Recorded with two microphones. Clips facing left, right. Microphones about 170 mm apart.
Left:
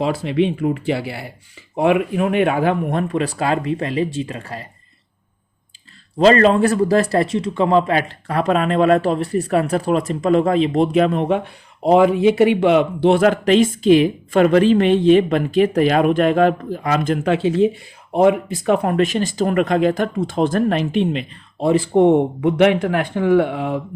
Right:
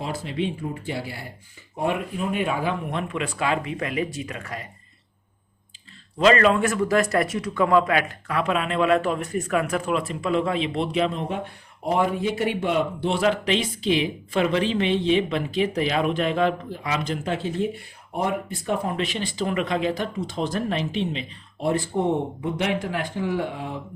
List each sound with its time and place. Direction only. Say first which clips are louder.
0.0 s speech: left 9 dB; 75° left (ahead or behind)
1.7 s speech: left 9 dB; 90° left; by 2.7 s 65° left (ahead or behind)
2.9 s speech: left 8 dB; 40° left (ahead or behind)
6.1 s speech: left 5 dB; 35° left (ahead or behind); by 13.1 s 85° left
13.1 s a woman's voice: left 6 dB; 50° left (ahead or behind)
17.2 s speech: left 12 dB; 85° left; by 19.0 s 65° left (ahead or behind)
19.0 s a woman's voice: left 8 dB; 45° left (ahead or behind)
21.7 s speech: left 10 dB; 85° left